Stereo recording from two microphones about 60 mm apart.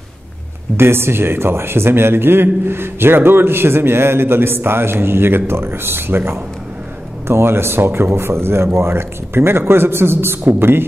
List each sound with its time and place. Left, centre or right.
0.7 s a man's voice: right